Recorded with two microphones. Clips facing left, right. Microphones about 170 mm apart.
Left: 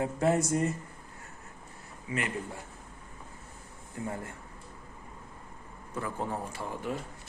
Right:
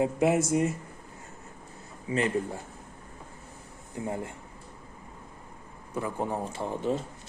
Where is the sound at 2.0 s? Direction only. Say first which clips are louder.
Right 6 dB; 30° right (ahead or behind).